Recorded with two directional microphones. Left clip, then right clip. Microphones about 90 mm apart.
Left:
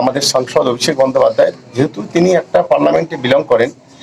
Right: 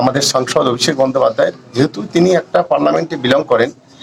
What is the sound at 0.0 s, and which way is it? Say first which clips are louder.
Speech: even; 30° right (ahead or behind).